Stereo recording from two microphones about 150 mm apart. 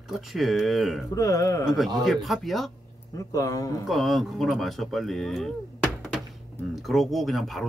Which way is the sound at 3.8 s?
Centre (ahead or behind).